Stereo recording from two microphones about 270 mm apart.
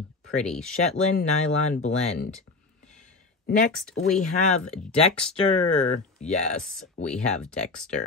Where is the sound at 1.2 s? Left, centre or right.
Left.